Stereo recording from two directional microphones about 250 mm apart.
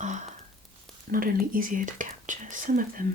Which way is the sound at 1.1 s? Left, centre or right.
Right.